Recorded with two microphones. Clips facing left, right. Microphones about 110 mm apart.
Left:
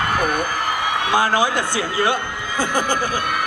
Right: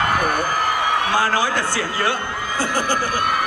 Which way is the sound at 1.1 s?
15° left (ahead or behind).